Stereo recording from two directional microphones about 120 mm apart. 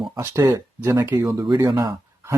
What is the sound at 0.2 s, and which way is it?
Speech, 25° right (ahead or behind).